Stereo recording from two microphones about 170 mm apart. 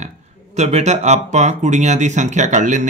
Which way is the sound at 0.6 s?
40° right (ahead or behind).